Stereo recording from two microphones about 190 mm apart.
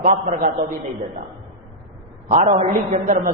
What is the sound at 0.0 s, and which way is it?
Speech, 45° right (ahead or behind).